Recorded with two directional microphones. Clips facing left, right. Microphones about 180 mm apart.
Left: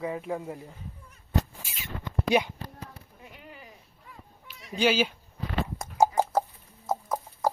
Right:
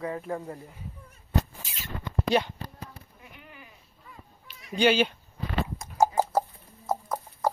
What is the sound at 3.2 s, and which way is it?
Chop, 30° left (ahead or behind).